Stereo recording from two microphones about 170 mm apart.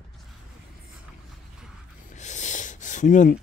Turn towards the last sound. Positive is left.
turn(degrees=45)  # may be behind; listen again after turning